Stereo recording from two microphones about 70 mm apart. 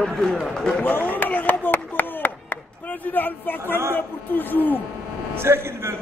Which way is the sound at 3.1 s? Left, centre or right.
Left.